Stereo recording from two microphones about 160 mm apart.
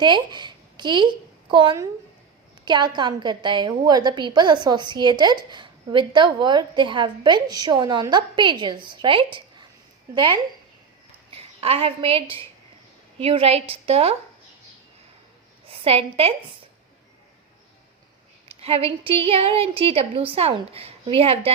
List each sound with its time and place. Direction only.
0.0 s a woman's voice: 30° right (ahead or behind)
15.6 s a woman's voice: 35° right (ahead or behind)
18.4 s a woman's voice: 35° right (ahead or behind)